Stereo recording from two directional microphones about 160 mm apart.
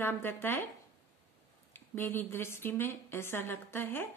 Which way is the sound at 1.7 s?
15° left (ahead or behind).